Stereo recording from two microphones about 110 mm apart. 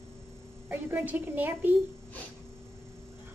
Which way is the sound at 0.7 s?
15° right (ahead or behind).